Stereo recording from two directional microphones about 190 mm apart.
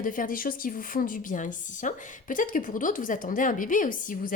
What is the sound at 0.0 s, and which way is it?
A woman's voice, 45° left (ahead or behind).